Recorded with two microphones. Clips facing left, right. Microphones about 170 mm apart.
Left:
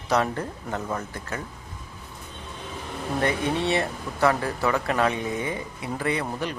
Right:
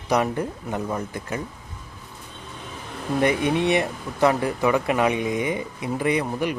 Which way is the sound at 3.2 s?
15° right (ahead or behind).